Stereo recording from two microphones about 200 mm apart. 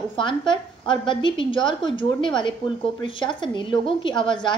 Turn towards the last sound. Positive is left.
turn(degrees=25)  # may be behind; listen again after turning